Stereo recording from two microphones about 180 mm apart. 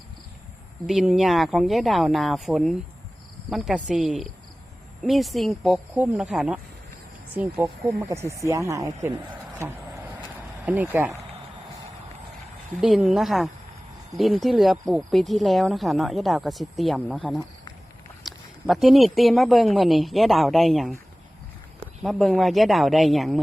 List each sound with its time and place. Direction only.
0.9 s speech: centre (ahead or behind)
12.8 s speech: centre (ahead or behind)